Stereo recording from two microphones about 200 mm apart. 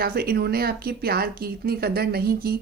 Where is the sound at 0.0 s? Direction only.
50° right (ahead or behind).